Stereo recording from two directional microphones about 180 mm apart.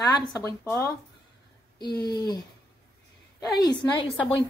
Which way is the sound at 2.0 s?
20° left (ahead or behind).